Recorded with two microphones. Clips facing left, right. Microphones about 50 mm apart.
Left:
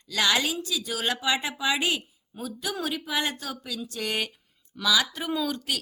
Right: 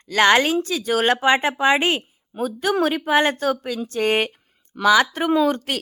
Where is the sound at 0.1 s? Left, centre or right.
Right.